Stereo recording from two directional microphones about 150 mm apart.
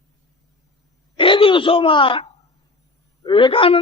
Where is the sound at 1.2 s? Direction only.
35° left (ahead or behind).